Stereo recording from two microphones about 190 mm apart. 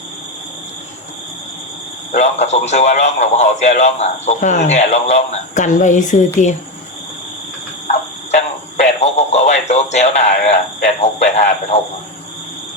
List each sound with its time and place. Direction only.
2.1 s a man's voice: 35° left (ahead or behind)
8.3 s speech: 35° left (ahead or behind)